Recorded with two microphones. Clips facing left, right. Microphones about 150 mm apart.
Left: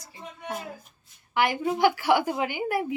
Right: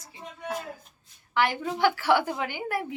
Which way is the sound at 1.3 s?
15° left (ahead or behind).